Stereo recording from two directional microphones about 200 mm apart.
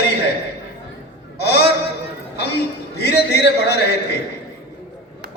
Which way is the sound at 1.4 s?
55° left (ahead or behind).